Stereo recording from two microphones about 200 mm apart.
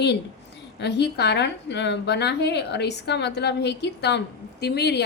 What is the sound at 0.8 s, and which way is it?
A woman's voice, 60° left (ahead or behind).